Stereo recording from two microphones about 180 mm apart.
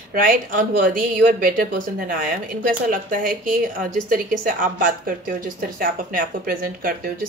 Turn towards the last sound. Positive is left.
turn(degrees=-50)  # may be behind; listen again after turning